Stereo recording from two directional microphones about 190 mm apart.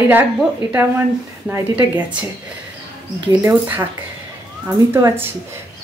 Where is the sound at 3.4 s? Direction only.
15° right (ahead or behind).